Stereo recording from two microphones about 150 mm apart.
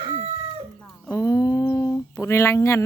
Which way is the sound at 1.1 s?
20° left (ahead or behind).